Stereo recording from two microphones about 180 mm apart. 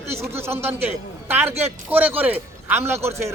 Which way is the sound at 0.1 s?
15° right (ahead or behind).